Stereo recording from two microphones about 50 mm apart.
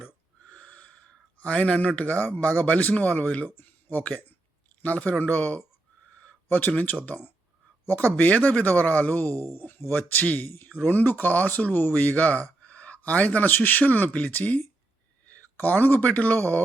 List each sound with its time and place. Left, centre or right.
0.4 s owl: left
1.4 s speech: left
3.6 s a sound: left
4.0 s speech: left
6.7 s speech: left
9.6 s speech: left